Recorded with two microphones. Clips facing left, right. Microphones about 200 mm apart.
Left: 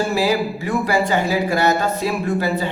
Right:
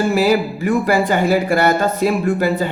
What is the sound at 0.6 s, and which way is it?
Speech, 50° right (ahead or behind).